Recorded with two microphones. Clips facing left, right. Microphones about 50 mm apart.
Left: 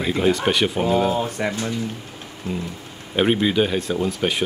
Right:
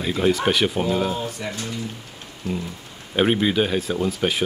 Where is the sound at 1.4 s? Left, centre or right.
Left.